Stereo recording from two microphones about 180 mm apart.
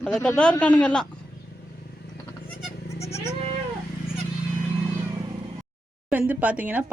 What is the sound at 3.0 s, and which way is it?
Sheep, 15° left (ahead or behind).